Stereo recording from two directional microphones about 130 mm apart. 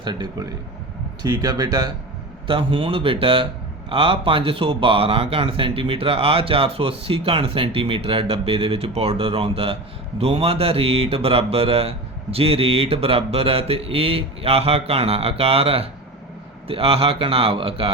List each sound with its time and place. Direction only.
0.0 s speech: 35° right (ahead or behind)
2.5 s speech: 40° right (ahead or behind)